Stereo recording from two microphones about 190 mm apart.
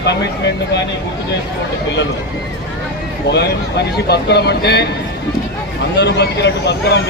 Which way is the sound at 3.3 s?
60° left (ahead or behind).